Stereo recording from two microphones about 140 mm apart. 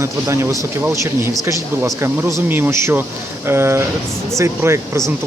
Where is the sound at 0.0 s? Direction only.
20° right (ahead or behind).